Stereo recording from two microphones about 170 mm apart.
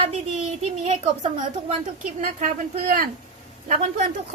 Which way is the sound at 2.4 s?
55° right (ahead or behind).